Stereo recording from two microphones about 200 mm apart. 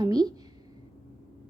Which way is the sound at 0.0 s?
20° right (ahead or behind).